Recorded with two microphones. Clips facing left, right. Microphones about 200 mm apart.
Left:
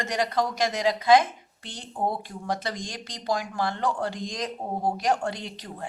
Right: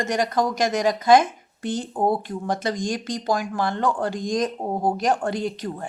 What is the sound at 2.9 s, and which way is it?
Speech, 50° right (ahead or behind).